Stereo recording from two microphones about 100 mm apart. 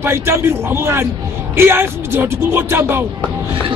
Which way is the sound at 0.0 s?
25° right (ahead or behind).